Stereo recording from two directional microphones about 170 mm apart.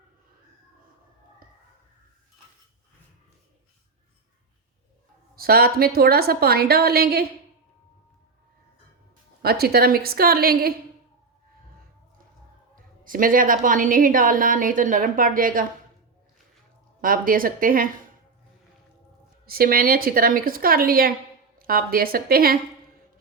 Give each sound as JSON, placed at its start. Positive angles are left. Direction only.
{"t": 5.4, "sound": "a woman's voice", "side_deg": -60}
{"t": 9.4, "sound": "a woman's voice", "side_deg": -65}
{"t": 12.7, "sound": "a woman's voice", "side_deg": -55}
{"t": 17.0, "sound": "a woman's voice", "side_deg": -55}
{"t": 19.5, "sound": "a woman's voice", "side_deg": -60}